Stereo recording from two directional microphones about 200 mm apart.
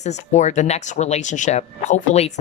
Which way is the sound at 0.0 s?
35° left (ahead or behind).